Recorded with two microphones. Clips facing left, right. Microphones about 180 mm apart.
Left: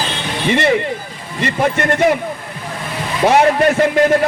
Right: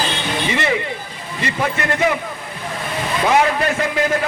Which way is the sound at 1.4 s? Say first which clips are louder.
Left 5 dB; 45° left (ahead or behind).